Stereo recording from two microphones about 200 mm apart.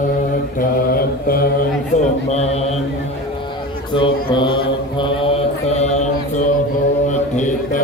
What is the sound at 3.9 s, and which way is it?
Mantra, 25° left (ahead or behind).